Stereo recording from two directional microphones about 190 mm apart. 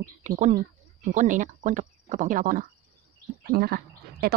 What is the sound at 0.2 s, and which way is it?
Speech, 40° right (ahead or behind).